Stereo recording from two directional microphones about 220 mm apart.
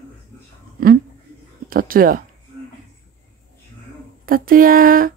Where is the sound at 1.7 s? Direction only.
40° right (ahead or behind).